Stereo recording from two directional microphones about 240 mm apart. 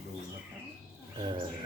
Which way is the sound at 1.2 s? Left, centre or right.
Right.